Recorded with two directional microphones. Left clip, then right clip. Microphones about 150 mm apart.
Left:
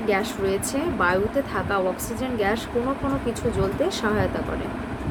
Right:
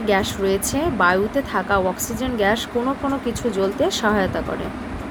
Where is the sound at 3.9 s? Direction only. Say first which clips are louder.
Right 4 dB; 50° right (ahead or behind).